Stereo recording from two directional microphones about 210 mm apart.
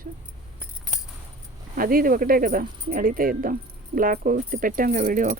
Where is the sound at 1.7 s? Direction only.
45° right (ahead or behind).